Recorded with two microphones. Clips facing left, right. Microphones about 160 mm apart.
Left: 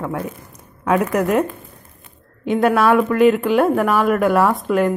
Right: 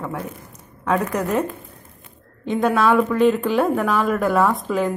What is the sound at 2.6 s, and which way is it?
Speech, 5° left (ahead or behind).